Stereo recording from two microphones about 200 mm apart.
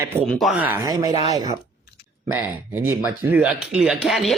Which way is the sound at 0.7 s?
15° right (ahead or behind).